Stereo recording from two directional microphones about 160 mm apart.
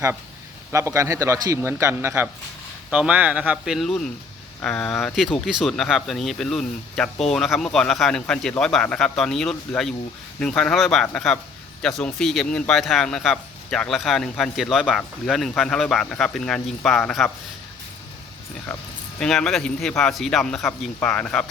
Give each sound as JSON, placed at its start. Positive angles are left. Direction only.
{"t": 0.7, "sound": "a man's voice", "side_deg": -15}
{"t": 19.2, "sound": "speech", "side_deg": 5}